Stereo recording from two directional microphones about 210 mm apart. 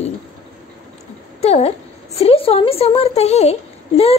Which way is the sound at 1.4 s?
30° left (ahead or behind).